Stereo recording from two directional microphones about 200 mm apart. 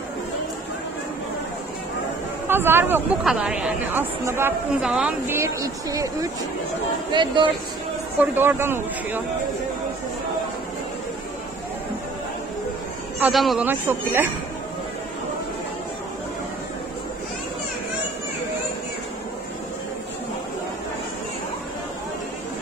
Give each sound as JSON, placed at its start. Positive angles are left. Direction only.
{"t": 2.4, "sound": "a woman's voice", "side_deg": -10}
{"t": 7.1, "sound": "speech", "side_deg": -25}
{"t": 8.2, "sound": "a woman's voice", "side_deg": -10}
{"t": 13.2, "sound": "a woman's voice", "side_deg": 0}